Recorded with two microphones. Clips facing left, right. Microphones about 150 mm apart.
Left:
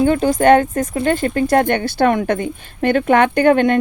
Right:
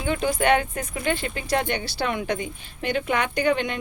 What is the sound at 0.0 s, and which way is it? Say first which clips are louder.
Speech: left 10 dB; 45° left (ahead or behind).